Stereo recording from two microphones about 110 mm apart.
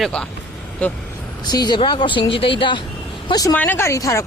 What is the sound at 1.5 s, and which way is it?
Speech, 40° left (ahead or behind).